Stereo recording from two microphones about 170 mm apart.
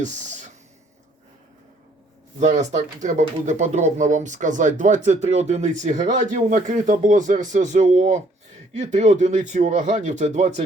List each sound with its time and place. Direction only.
0.0 s speech: 45° right (ahead or behind)
2.4 s speech: 45° right (ahead or behind)